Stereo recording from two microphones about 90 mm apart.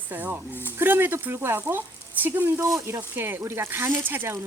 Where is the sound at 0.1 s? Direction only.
20° right (ahead or behind).